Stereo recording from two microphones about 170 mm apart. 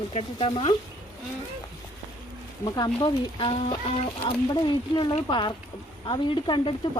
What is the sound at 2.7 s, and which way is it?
Speech, 25° left (ahead or behind).